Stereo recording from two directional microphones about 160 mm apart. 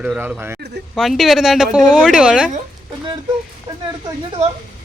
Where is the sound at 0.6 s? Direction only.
90° right.